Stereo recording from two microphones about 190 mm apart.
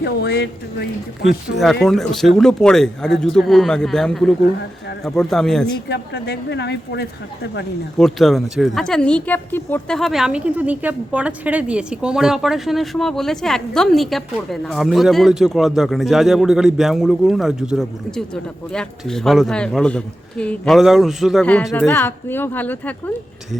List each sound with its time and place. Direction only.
0.0 s speech: 60° left (ahead or behind)
1.8 s speech: centre (ahead or behind)
5.9 s speech: 60° left (ahead or behind)
7.9 s speech: centre (ahead or behind)